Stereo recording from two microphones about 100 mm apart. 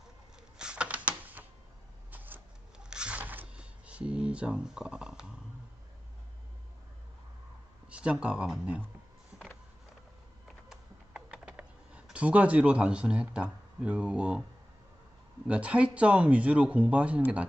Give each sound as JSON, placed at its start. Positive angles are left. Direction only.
{"t": 0.6, "sound": "typing", "side_deg": -10}
{"t": 2.0, "sound": "a sound", "side_deg": -20}
{"t": 7.9, "sound": "speech", "side_deg": -10}
{"t": 11.1, "sound": "computer keyboard", "side_deg": -10}
{"t": 15.4, "sound": "speech", "side_deg": -15}